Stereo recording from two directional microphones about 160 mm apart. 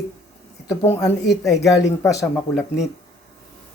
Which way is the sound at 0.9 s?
15° left (ahead or behind).